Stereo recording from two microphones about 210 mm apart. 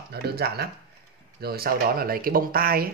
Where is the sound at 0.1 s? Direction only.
50° right (ahead or behind).